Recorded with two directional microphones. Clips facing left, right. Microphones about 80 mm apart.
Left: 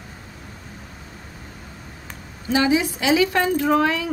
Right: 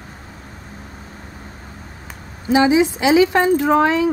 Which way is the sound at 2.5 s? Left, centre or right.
Right.